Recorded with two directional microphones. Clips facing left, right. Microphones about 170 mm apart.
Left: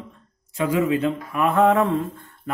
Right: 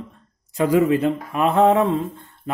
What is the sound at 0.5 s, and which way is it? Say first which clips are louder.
A man's voice: right 4 dB; 35° right (ahead or behind).